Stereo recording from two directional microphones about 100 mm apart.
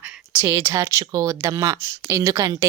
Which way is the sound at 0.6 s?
30° right (ahead or behind).